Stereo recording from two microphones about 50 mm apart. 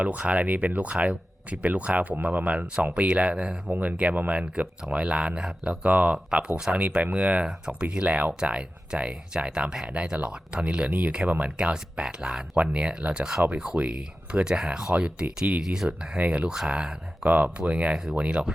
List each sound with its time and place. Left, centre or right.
0.0 s speech: right
3.7 s speech: right
5.0 s speech: right
15.9 s speech: right